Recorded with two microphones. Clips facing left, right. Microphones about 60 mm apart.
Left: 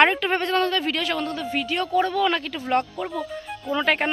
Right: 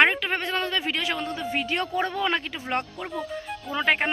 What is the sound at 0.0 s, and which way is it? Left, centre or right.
Speech, centre.